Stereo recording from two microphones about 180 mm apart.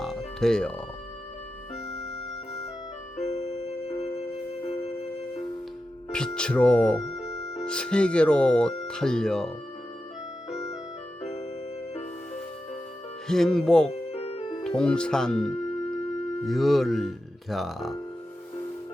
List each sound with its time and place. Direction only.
0.0 s music: centre (ahead or behind)
3.2 s music: 35° left (ahead or behind)
6.1 s music: 5° left (ahead or behind)
7.6 s speech: 5° left (ahead or behind)
13.2 s speech: 5° left (ahead or behind)
13.9 s music: 35° left (ahead or behind)
14.6 s speech: 5° left (ahead or behind)